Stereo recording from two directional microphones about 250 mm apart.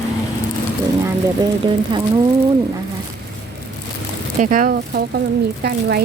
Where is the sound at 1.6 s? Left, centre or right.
Centre.